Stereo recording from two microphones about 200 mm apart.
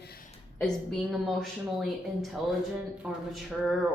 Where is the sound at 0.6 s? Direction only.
Centre (ahead or behind).